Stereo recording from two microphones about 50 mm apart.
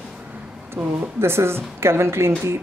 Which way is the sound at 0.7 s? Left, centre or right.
Right.